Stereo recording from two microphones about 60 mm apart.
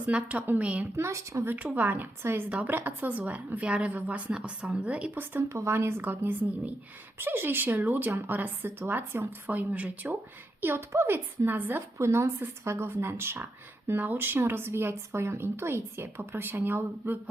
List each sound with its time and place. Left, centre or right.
0.0 s a woman's voice: right
0.9 s speech: right
1.5 s a woman's voice: right
5.1 s speech: right
5.4 s speech: right
10.6 s speech: right
11.9 s speech: right